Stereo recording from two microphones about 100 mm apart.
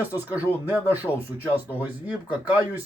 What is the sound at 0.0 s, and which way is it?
Speech, 15° right (ahead or behind).